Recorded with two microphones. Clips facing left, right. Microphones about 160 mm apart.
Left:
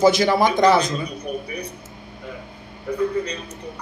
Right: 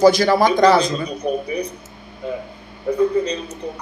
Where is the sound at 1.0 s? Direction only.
30° right (ahead or behind).